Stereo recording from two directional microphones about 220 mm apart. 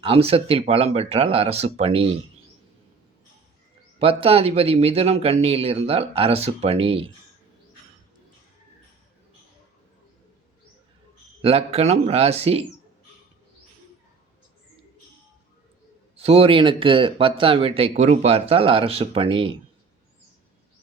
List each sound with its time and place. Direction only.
0.0 s speech: 25° right (ahead or behind)
4.2 s speech: 25° right (ahead or behind)
11.4 s speech: 30° right (ahead or behind)
16.1 s speech: 25° right (ahead or behind)